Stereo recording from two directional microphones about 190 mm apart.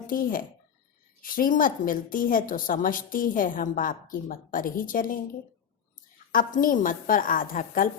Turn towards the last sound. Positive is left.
turn(degrees=45)  # may be behind; listen again after turning